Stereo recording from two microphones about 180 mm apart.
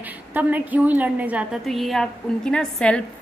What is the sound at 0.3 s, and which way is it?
A woman's voice, 10° right (ahead or behind).